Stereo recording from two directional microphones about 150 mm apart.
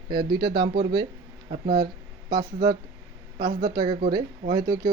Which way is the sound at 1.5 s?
90° right.